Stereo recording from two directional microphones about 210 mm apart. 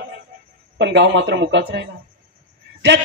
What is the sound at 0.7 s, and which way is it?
A man's voice, 55° right (ahead or behind).